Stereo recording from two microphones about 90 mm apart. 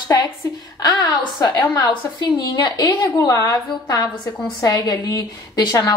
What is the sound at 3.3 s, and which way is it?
A woman's voice, 35° left (ahead or behind).